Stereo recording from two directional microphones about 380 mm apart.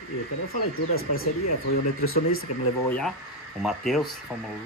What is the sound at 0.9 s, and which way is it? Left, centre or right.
Speech, left.